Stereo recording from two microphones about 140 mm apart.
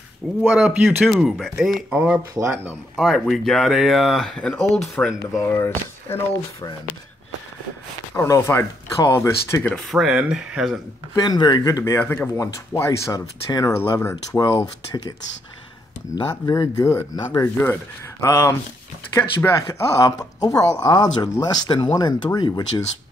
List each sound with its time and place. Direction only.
0.5 s speech: 10° right (ahead or behind)
3.0 s speech: centre (ahead or behind)
5.3 s speech: 20° left (ahead or behind)
8.2 s speech: 20° left (ahead or behind)
9.8 s speech: 5° right (ahead or behind)
11.1 s speech: 30° left (ahead or behind)
16.2 s speech: 25° left (ahead or behind)